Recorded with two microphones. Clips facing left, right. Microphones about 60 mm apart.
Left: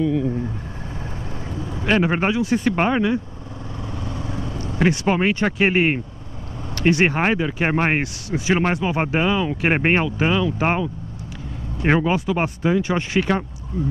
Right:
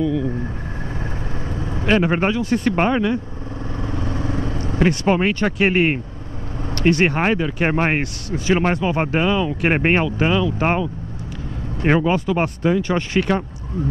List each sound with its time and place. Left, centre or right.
0.0 s speech: centre
1.5 s vehicle: right
1.9 s speech: centre
3.9 s vehicle: right
4.7 s speech: centre